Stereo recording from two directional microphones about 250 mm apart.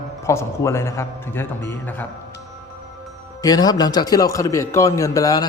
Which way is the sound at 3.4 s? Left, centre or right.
Centre.